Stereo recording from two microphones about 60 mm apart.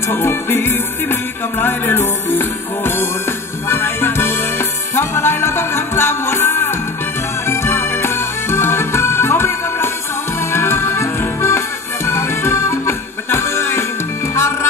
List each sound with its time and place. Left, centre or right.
0.1 s music: left